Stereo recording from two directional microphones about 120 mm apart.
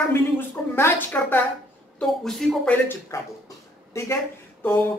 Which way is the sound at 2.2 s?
5° left (ahead or behind).